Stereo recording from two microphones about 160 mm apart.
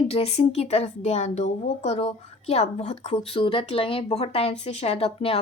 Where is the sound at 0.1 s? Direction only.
40° left (ahead or behind).